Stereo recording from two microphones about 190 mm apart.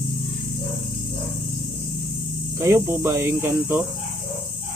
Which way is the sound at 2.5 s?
15° right (ahead or behind).